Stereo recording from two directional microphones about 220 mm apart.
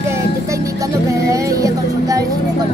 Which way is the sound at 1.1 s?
15° right (ahead or behind).